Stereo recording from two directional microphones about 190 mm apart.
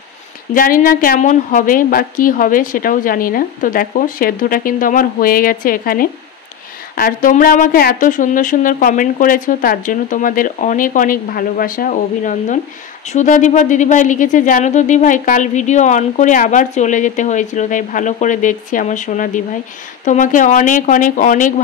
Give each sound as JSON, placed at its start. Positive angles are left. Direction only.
{"t": 0.6, "sound": "a woman's voice", "side_deg": 45}